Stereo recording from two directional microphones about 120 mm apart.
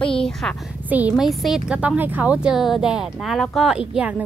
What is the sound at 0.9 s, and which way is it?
Speech, 15° right (ahead or behind).